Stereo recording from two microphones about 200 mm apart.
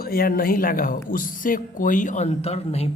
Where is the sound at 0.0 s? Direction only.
50° left (ahead or behind).